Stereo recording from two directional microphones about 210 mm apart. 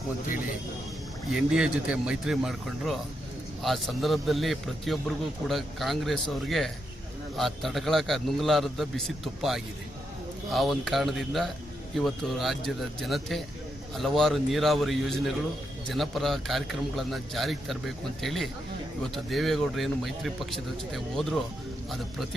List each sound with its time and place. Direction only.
1.4 s a man's voice: 5° right (ahead or behind)